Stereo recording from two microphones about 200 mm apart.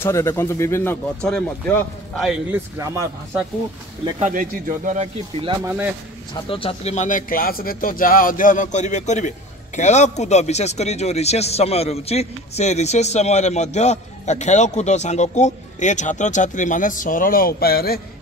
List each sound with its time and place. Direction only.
0.0 s speech: 15° left (ahead or behind)
4.2 s speech: 40° right (ahead or behind)
6.5 s speech: 30° left (ahead or behind); by 18.0 s 50° left (ahead or behind)